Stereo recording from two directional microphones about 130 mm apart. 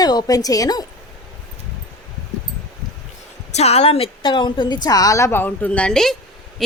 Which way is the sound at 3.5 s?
55° left (ahead or behind).